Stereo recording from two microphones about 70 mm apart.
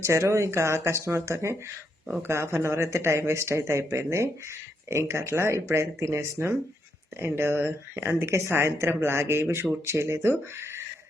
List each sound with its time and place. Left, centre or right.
0.0 s speech: right